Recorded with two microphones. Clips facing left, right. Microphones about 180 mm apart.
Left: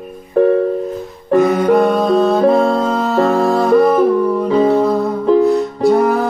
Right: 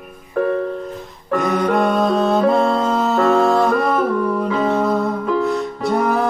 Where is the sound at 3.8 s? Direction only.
20° left (ahead or behind).